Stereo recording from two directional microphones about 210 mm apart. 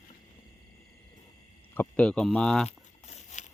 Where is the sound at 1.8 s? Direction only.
5° left (ahead or behind).